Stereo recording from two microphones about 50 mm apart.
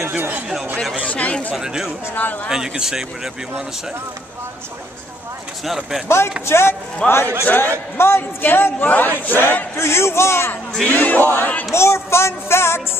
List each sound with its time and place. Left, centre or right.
1.0 s speech: left
1.5 s speech: centre
6.0 s music: left
7.0 s speech: centre
7.4 s speech: left
8.0 s music: left
8.4 s a man's voice: left
8.7 s speech: left
9.8 s music: left
10.9 s speech: left
11.7 s music: left